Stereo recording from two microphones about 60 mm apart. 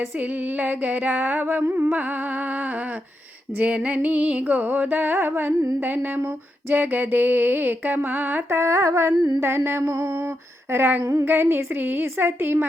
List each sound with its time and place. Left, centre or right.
0.2 s music: right
3.6 s music: centre
8.4 s humming: right
10.7 s music: right